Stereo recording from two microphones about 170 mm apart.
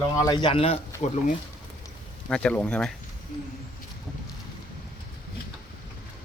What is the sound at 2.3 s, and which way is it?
Speech, 10° left (ahead or behind).